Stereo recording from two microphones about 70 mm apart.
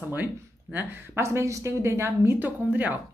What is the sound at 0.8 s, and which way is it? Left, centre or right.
Speech, right.